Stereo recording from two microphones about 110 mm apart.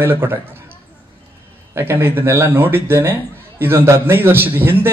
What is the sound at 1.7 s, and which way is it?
A man's voice, 20° right (ahead or behind).